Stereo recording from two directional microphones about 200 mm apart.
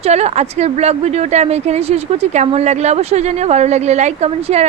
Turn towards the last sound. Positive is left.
turn(degrees=-35)  # may be behind; listen again after turning